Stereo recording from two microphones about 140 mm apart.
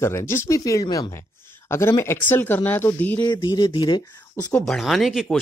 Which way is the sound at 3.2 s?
30° left (ahead or behind).